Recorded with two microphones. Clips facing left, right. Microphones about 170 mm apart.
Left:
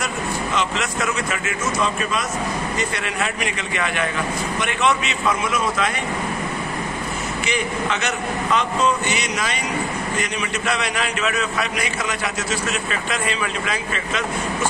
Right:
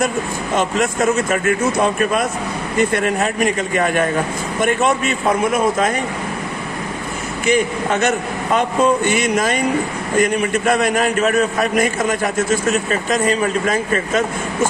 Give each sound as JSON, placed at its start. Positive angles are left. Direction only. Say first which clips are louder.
{"t": 0.6, "sound": "a man's voice", "louder": "right 9 dB", "side_deg": -50}
{"t": 7.4, "sound": "a man's voice", "louder": "right 8 dB", "side_deg": -50}